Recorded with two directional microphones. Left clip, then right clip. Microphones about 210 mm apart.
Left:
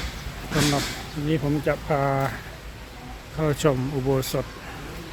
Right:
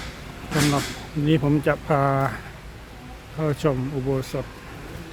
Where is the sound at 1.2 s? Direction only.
25° right (ahead or behind).